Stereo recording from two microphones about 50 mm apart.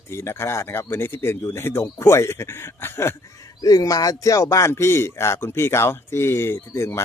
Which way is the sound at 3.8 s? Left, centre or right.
Left.